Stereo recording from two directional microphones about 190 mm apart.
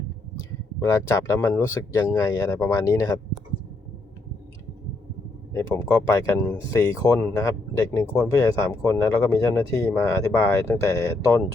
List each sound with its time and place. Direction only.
0.9 s speech: 15° left (ahead or behind)
5.5 s speech: 15° left (ahead or behind)